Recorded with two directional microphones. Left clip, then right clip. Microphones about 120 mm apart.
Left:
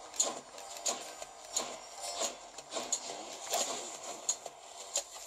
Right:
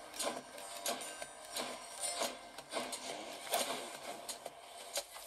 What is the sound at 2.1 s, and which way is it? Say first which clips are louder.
Rub: left 2 dB; 10° left (ahead or behind).